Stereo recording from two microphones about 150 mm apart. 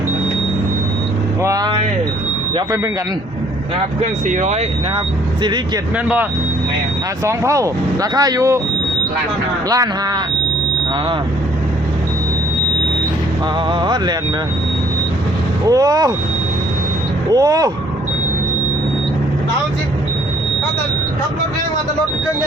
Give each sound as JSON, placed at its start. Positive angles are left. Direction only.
{"t": 1.4, "sound": "vehicle", "side_deg": -20}
{"t": 4.3, "sound": "speech", "side_deg": -55}
{"t": 5.4, "sound": "speech", "side_deg": -30}
{"t": 7.3, "sound": "speech", "side_deg": -20}
{"t": 9.6, "sound": "speech", "side_deg": -25}
{"t": 13.7, "sound": "speech", "side_deg": -30}
{"t": 15.6, "sound": "speech", "side_deg": -25}
{"t": 17.3, "sound": "speech", "side_deg": -25}